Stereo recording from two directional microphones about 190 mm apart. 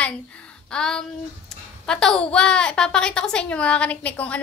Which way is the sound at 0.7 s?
5° left (ahead or behind).